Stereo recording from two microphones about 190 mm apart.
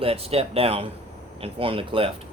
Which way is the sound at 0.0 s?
30° right (ahead or behind).